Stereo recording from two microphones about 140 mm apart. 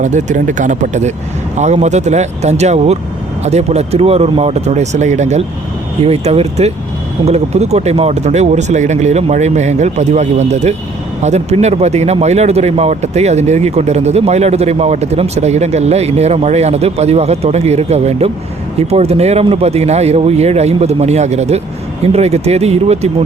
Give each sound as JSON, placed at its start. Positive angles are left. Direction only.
{"t": 0.0, "sound": "speech", "side_deg": -60}